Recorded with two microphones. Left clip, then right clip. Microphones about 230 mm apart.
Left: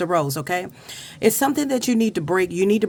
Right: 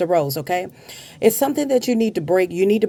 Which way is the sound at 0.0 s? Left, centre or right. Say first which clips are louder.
Right 3 dB; left.